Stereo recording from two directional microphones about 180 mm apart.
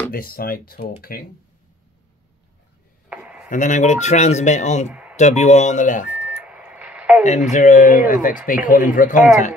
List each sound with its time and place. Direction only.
0.1 s speech: 55° left (ahead or behind)
3.1 s chopping: 5° right (ahead or behind)
3.4 s speech: 45° left (ahead or behind)
6.1 s a sound: 5° right (ahead or behind)
7.2 s speech: 40° left (ahead or behind)